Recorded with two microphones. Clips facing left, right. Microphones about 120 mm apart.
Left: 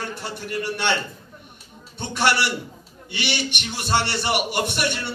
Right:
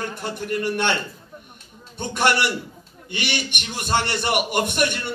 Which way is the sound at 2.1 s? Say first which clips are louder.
Right 1 dB; 50° right (ahead or behind).